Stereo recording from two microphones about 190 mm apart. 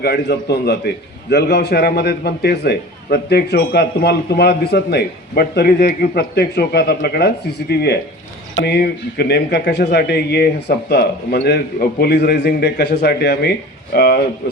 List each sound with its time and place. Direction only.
0.0 s a man's voice: 60° left (ahead or behind)